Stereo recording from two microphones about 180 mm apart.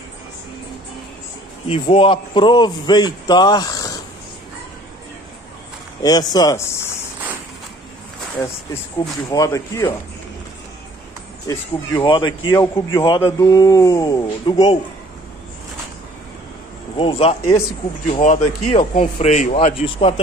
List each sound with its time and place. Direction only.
1.7 s a man's voice: 30° left (ahead or behind)
6.0 s a man's voice: 20° left (ahead or behind)
9.3 s speech: 15° left (ahead or behind)
11.4 s a man's voice: 25° left (ahead or behind)
17.0 s speech: 30° left (ahead or behind)